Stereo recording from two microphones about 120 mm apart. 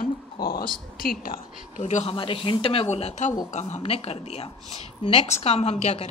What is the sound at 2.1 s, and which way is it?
A woman's voice, 50° left (ahead or behind).